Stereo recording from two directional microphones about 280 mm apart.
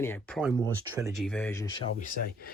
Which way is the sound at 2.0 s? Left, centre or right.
Left.